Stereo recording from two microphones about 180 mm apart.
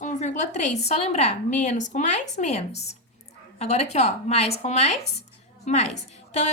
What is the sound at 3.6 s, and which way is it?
A woman's voice, 35° left (ahead or behind).